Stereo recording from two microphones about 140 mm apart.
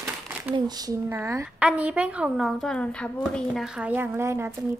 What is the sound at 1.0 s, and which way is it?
A woman's voice, 15° right (ahead or behind).